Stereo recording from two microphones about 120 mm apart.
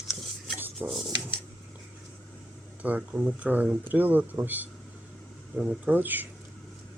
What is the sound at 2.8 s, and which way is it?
Speech, 15° right (ahead or behind).